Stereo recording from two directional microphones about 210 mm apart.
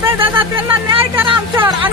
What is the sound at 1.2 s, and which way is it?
Speech, 25° right (ahead or behind).